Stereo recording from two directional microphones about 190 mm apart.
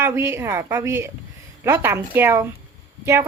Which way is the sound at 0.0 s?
15° right (ahead or behind).